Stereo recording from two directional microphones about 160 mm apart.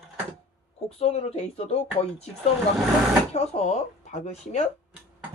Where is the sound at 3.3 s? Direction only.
40° left (ahead or behind).